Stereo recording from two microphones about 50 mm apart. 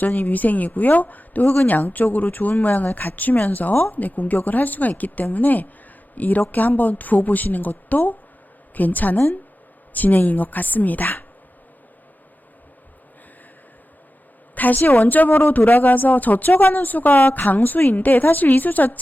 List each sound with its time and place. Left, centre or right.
0.0 s speech: left
14.5 s a sound: left
14.8 s a woman's voice: left